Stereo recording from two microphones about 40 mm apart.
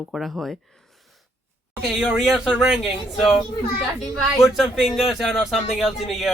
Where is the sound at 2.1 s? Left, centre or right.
Centre.